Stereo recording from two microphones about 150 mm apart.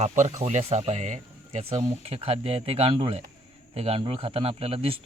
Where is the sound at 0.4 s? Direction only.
45° right (ahead or behind).